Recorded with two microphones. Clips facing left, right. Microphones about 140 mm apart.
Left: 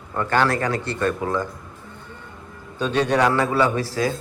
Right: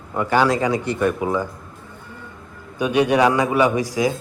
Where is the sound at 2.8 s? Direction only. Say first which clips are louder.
Right 3 dB; 10° right (ahead or behind).